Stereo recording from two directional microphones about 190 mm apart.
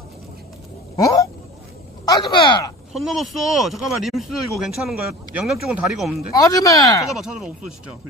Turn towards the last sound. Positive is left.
turn(degrees=0)  # may be behind; listen again after turning